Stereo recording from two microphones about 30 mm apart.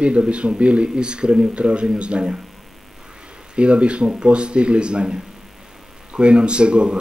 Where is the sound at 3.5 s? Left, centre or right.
Right.